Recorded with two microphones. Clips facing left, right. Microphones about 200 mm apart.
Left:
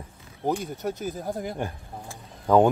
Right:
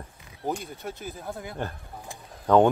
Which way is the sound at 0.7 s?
40° left (ahead or behind).